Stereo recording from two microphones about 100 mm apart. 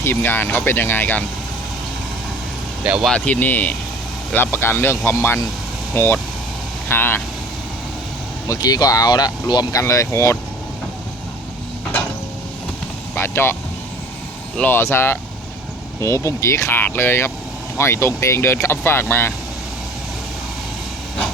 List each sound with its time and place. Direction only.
0.0 s speech: 20° left (ahead or behind)
2.8 s speech: 10° right (ahead or behind)
3.1 s speech: 15° left (ahead or behind)
8.4 s speech: 40° left (ahead or behind)
9.8 s speech: 30° left (ahead or behind)
13.1 s speech: 25° left (ahead or behind)